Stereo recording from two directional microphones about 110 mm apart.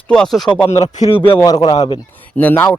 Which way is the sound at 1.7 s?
55° left (ahead or behind).